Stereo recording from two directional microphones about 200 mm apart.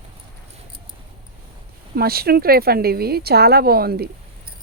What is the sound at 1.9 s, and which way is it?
Speech, 50° right (ahead or behind).